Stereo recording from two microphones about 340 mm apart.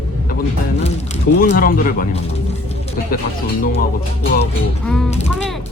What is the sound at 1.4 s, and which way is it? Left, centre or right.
Speech, left.